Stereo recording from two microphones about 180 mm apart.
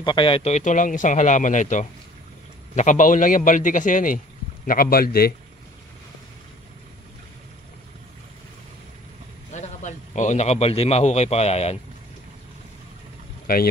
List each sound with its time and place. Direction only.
0.0 s a man's voice: 25° left (ahead or behind); by 5.3 s 55° left (ahead or behind)
9.5 s a man's voice: 40° left (ahead or behind)